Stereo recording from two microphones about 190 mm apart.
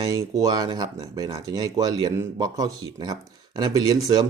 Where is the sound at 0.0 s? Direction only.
20° right (ahead or behind).